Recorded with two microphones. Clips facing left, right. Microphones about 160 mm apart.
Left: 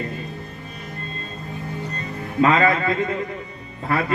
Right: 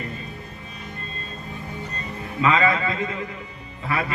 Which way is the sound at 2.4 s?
45° left (ahead or behind).